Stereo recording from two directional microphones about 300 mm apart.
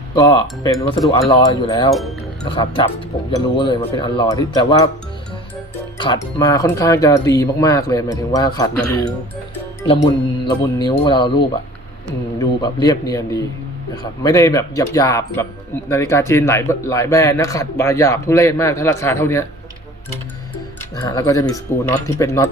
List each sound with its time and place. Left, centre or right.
0.2 s speech: centre
1.9 s speech: centre
2.4 s speech: centre
6.0 s speech: centre
12.4 s speech: centre
20.9 s speech: centre